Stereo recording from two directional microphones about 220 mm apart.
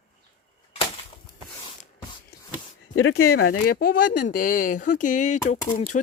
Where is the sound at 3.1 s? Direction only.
45° left (ahead or behind).